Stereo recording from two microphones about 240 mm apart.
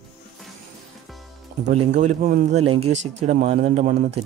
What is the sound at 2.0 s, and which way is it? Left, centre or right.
Speech, right.